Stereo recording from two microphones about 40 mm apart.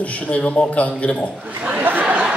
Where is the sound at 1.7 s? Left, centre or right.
Right.